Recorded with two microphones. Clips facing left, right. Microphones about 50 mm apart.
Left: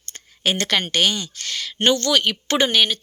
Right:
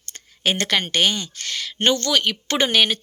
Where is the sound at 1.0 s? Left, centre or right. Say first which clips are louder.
Even; right.